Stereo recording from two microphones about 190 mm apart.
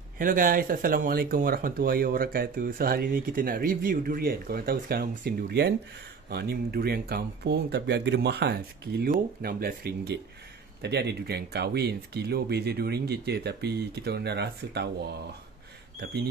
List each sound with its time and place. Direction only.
0.2 s speech: 45° right (ahead or behind)